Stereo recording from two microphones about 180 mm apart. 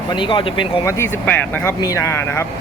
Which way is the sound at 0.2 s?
25° left (ahead or behind).